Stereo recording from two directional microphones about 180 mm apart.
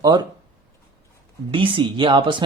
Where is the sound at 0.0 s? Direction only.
25° right (ahead or behind).